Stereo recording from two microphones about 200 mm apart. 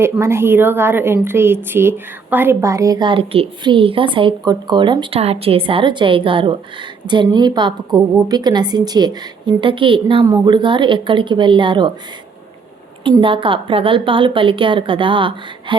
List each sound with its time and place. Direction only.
0.0 s a woman's voice: 10° right (ahead or behind)
13.1 s a woman's voice: 25° right (ahead or behind)